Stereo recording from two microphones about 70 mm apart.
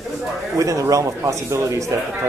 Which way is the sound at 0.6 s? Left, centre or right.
Right.